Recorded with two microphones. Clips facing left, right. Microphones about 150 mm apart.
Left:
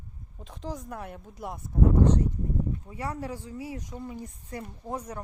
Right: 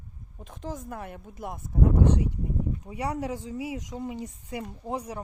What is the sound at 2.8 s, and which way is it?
Speech, 15° right (ahead or behind).